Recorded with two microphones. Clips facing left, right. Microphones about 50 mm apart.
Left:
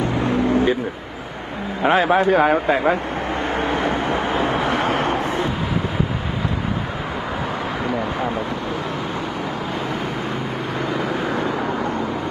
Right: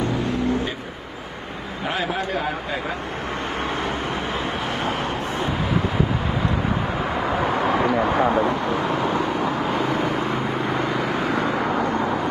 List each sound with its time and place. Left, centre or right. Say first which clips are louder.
1.9 s a man's voice: left 10 dB; left
4.8 s vehicle: left 5 dB; left